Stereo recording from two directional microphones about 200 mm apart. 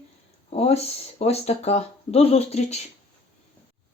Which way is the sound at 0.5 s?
30° left (ahead or behind).